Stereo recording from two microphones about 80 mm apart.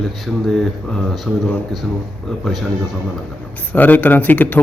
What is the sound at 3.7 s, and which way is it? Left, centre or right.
Speech, left.